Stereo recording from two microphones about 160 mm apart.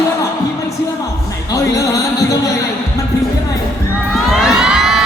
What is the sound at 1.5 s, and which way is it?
Music, 20° left (ahead or behind).